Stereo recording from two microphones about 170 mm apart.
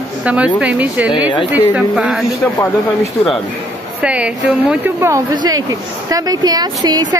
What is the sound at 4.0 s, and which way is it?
A woman's voice, 5° right (ahead or behind).